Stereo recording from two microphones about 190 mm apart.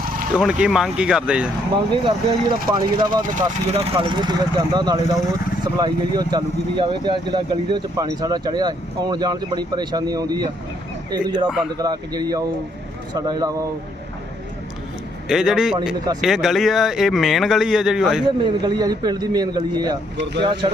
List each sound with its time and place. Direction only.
0.3 s speech: 5° right (ahead or behind)
1.9 s speech: 25° right (ahead or behind)
11.4 s speech: 5° right (ahead or behind)
11.8 s speech: 20° right (ahead or behind)
15.3 s speech: 5° right (ahead or behind)
18.3 s speech: 25° right (ahead or behind)